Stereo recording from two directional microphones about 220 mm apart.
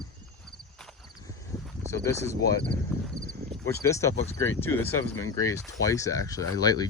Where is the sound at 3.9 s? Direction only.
15° left (ahead or behind).